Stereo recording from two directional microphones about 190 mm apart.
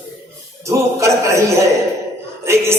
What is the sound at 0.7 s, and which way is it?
A man's voice, 15° right (ahead or behind).